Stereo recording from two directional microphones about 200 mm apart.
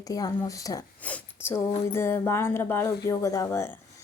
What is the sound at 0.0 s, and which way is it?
Speech, 20° left (ahead or behind).